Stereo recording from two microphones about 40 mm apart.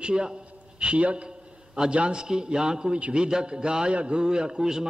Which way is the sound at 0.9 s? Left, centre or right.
Right.